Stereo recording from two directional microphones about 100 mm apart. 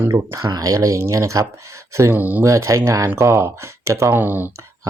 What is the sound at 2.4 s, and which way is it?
Speech, 30° right (ahead or behind).